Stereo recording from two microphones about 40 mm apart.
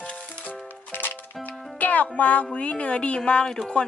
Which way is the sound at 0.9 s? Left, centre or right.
Left.